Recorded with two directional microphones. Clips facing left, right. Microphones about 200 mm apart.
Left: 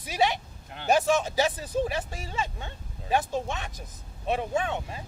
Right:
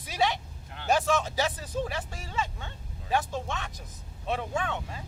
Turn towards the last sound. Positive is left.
turn(degrees=15)  # may be behind; listen again after turning